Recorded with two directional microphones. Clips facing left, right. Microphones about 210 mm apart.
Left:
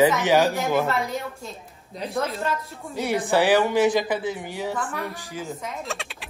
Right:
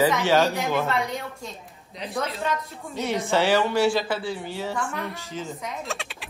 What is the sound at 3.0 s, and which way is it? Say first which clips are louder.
Speech: left 2 dB; 15° left (ahead or behind).